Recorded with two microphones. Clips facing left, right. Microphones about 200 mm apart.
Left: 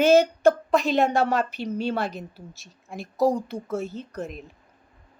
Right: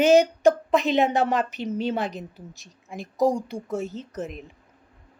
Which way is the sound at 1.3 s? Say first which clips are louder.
Even; 20° right (ahead or behind).